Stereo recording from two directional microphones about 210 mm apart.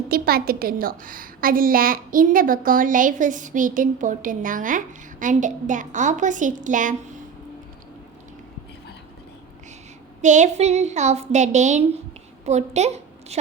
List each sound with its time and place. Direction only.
0.1 s a woman's voice: 45° right (ahead or behind)
10.2 s a woman's voice: 35° right (ahead or behind)